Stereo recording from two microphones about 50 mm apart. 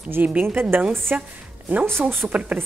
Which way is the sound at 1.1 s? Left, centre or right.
Right.